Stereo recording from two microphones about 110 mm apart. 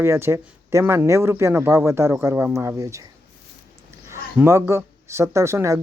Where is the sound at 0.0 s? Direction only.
25° right (ahead or behind).